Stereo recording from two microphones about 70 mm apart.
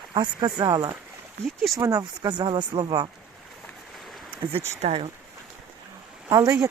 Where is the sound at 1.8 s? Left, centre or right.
Right.